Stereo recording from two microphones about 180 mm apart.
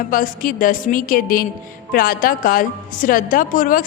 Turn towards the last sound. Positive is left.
turn(degrees=50)  # may be behind; listen again after turning